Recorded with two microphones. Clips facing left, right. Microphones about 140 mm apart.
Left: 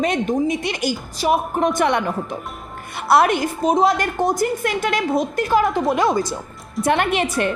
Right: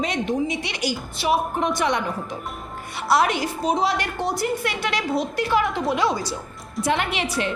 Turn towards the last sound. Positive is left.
turn(degrees=50)  # may be behind; listen again after turning